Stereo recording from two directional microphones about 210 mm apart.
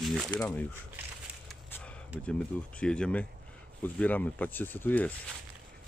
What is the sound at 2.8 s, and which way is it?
Speech, 5° left (ahead or behind).